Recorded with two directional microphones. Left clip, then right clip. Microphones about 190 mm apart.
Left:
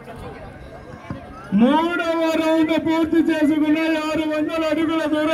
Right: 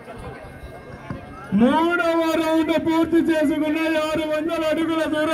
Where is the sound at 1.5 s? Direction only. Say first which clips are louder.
Even; 60° right (ahead or behind).